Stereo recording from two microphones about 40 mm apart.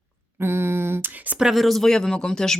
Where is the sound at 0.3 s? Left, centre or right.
Right.